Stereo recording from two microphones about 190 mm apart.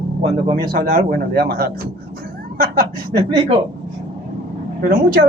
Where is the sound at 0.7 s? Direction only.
50° right (ahead or behind).